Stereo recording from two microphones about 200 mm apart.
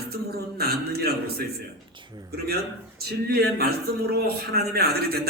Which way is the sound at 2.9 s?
50° right (ahead or behind).